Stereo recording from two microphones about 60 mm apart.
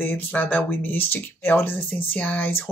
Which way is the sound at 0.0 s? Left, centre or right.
Left.